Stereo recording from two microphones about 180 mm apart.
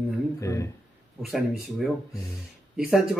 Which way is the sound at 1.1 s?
Centre (ahead or behind).